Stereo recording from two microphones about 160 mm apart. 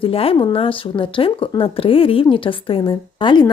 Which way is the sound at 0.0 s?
35° left (ahead or behind).